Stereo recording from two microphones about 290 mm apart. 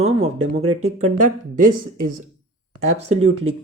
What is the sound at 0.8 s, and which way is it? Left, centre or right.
Speech, right.